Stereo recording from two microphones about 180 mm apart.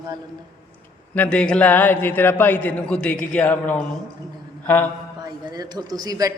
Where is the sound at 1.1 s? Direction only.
10° left (ahead or behind).